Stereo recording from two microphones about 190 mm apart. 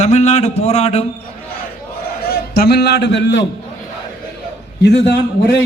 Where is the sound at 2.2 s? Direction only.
55° left (ahead or behind).